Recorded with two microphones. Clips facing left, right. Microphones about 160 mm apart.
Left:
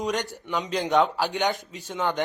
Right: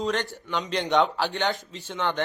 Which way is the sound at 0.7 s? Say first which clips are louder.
Left 1 dB; centre (ahead or behind).